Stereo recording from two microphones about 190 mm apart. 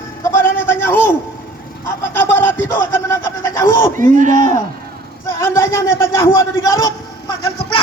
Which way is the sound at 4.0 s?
45° right (ahead or behind).